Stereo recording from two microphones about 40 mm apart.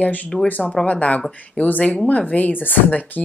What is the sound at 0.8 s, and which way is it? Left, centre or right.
Speech, left.